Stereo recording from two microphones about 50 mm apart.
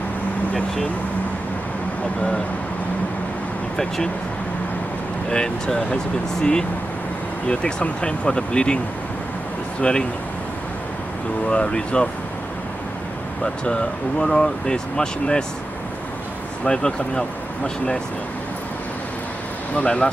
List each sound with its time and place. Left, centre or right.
3.7 s speech: centre
5.3 s speech: centre
7.4 s speech: centre
9.8 s speech: centre
11.4 s speech: left
13.7 s speech: centre
16.6 s speech: centre
19.7 s speech: left